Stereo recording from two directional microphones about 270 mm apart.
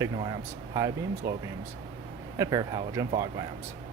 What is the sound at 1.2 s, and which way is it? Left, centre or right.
Speech, centre.